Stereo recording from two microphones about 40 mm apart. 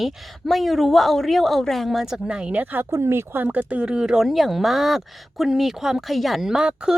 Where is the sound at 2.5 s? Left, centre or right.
Right.